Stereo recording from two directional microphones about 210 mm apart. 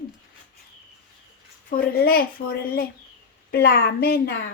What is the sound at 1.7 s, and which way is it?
A woman's voice, 45° left (ahead or behind).